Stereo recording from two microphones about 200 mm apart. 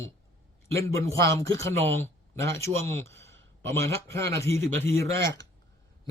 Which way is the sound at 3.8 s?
15° left (ahead or behind).